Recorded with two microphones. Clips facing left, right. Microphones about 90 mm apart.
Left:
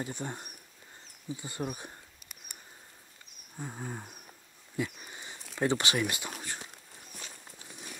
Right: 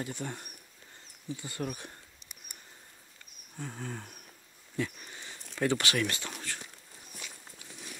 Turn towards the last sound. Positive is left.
turn(degrees=15)  # may be behind; listen again after turning